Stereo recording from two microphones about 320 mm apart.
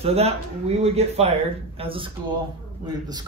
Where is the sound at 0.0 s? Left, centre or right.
Centre.